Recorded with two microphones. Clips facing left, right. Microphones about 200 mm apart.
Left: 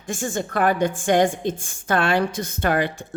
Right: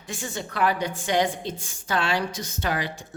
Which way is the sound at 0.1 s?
50° left (ahead or behind).